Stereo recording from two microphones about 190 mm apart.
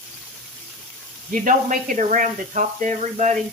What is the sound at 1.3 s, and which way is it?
Speech, 45° right (ahead or behind).